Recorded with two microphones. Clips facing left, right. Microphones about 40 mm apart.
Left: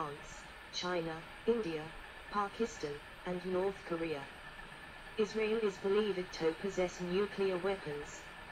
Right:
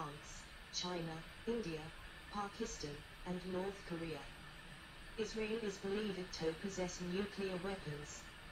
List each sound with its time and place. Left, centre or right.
0.7 s speech: left